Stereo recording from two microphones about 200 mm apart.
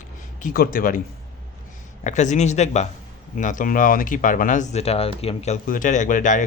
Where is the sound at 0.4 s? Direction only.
45° left (ahead or behind).